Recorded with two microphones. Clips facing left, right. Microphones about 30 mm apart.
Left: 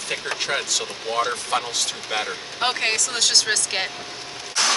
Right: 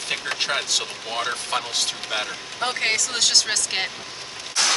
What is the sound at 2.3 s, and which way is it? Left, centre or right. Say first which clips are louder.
Speech: left 3 dB; left.